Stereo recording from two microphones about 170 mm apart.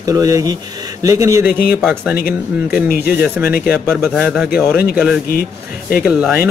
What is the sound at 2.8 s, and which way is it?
Speech, 60° left (ahead or behind).